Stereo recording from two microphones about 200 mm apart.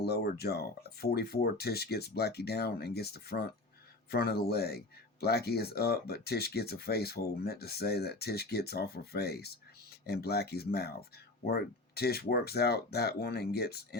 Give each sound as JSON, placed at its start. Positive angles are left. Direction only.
{"t": 0.0, "sound": "speech", "side_deg": 55}